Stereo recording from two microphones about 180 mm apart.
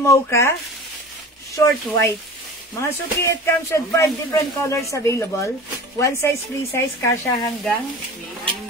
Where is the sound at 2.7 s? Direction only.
15° left (ahead or behind).